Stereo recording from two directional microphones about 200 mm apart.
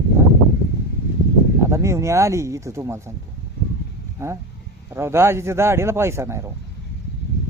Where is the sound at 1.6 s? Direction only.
15° right (ahead or behind).